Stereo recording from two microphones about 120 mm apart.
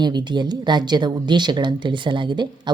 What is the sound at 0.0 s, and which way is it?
Speech, 35° right (ahead or behind).